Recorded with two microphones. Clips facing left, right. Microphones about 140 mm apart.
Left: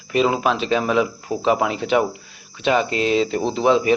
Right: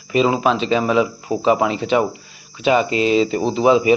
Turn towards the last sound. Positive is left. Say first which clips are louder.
# right 3 dB
turn(degrees=-5)  # may be behind; listen again after turning